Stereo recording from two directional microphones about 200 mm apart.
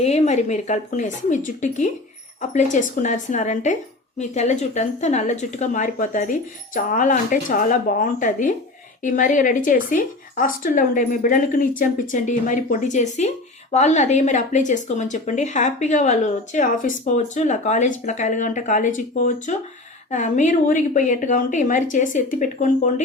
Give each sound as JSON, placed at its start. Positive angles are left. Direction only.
{"t": 0.0, "sound": "speech", "side_deg": 35}
{"t": 2.4, "sound": "speech", "side_deg": 40}